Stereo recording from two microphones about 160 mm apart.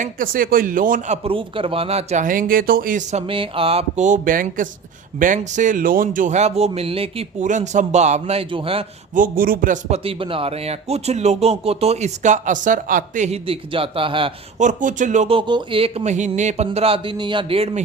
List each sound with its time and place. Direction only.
0.0 s speech: 60° right (ahead or behind); by 8.8 s 35° right (ahead or behind)
9.1 s a man's voice: 60° right (ahead or behind)
10.0 s speech: 35° right (ahead or behind)
14.6 s speech: 50° right (ahead or behind)
15.4 s speech: 30° right (ahead or behind); by 16.6 s 45° right (ahead or behind)
16.6 s speech: 35° right (ahead or behind)